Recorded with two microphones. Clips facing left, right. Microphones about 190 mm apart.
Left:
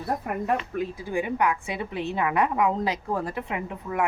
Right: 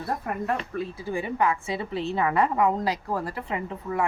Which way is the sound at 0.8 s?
15° left (ahead or behind).